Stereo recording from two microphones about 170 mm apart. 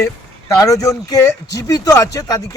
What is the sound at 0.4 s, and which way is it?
Speech, 20° left (ahead or behind).